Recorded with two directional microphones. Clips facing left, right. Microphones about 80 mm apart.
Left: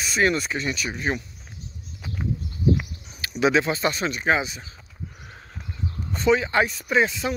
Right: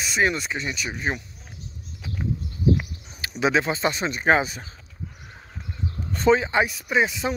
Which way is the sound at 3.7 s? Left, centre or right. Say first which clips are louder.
Even; right.